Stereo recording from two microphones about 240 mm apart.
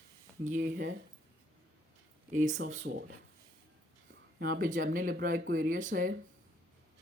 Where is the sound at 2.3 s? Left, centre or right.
Right.